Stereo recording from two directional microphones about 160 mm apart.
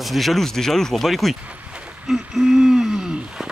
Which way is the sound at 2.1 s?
5° right (ahead or behind).